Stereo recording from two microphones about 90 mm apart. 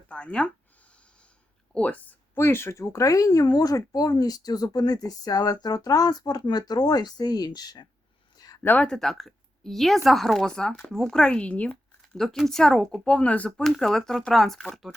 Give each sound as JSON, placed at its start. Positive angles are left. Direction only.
{"t": 0.1, "sound": "speech", "side_deg": 10}
{"t": 1.7, "sound": "a sound", "side_deg": 15}
{"t": 2.4, "sound": "speech", "side_deg": 25}
{"t": 2.8, "sound": "speech", "side_deg": 40}
{"t": 8.6, "sound": "speech", "side_deg": 15}
{"t": 12.2, "sound": "speech", "side_deg": 5}
{"t": 13.7, "sound": "speech", "side_deg": 5}